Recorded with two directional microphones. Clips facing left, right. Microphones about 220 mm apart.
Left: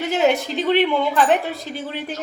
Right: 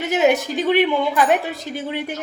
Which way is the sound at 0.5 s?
15° right (ahead or behind).